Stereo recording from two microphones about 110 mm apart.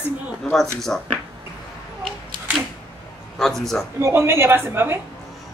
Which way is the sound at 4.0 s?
25° right (ahead or behind).